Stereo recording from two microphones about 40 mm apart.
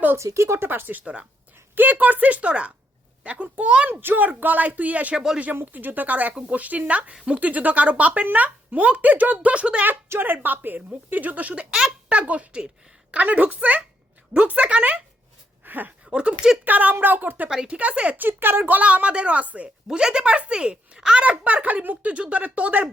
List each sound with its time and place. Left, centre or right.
0.6 s speech: right
0.9 s speech: right
4.0 s speech: right
10.1 s speech: right
11.7 s a child's voice: right
15.6 s a sound: right
16.0 s speech: right
16.6 s speech: right
17.7 s a child's voice: right
18.2 s speech: right
18.8 s speech: right
19.9 s a child's voice: centre
21.2 s speech: right